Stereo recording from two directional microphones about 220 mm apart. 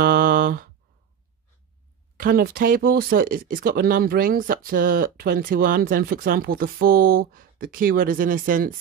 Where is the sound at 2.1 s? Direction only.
40° right (ahead or behind).